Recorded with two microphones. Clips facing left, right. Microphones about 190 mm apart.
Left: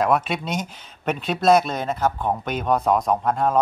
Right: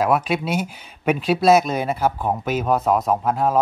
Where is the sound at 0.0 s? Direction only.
5° right (ahead or behind).